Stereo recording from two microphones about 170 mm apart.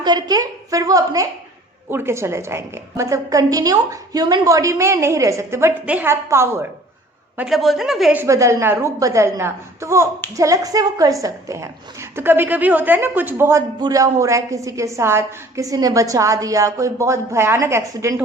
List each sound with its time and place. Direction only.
0.0 s a woman's voice: 25° right (ahead or behind)
7.3 s speech: centre (ahead or behind)
8.2 s a woman's voice: 15° right (ahead or behind)